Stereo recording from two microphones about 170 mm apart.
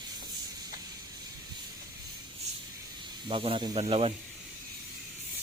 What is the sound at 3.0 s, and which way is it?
Snake, 30° right (ahead or behind).